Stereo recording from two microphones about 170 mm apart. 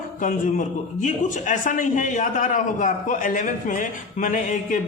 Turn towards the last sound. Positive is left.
turn(degrees=50)  # may be behind; listen again after turning